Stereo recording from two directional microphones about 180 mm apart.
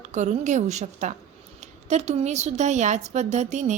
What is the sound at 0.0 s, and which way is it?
A woman's voice, 40° right (ahead or behind).